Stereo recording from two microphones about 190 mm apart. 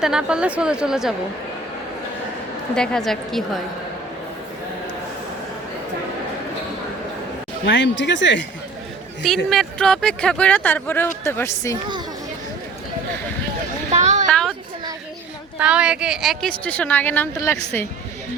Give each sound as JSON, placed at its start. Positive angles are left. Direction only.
{"t": 0.0, "sound": "speech", "side_deg": -5}
{"t": 2.7, "sound": "speech", "side_deg": 5}
{"t": 7.6, "sound": "speech", "side_deg": 70}
{"t": 9.2, "sound": "speech", "side_deg": 0}
{"t": 13.9, "sound": "a sound", "side_deg": -35}
{"t": 15.5, "sound": "speech", "side_deg": -5}